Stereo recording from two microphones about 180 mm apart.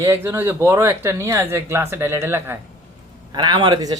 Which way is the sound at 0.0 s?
15° right (ahead or behind).